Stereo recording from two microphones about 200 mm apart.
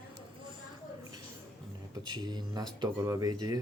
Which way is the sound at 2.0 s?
20° right (ahead or behind).